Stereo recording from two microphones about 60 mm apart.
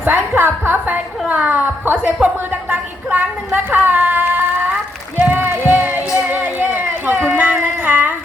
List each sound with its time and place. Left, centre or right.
0.0 s a woman's voice: right
2.2 s a sound: right
7.3 s music: right